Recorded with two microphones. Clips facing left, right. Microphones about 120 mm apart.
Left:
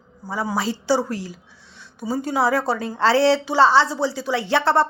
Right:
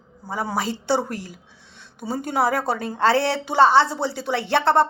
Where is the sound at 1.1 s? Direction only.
55° right (ahead or behind).